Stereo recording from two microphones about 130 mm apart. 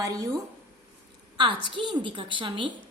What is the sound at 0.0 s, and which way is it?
Speech, 25° right (ahead or behind).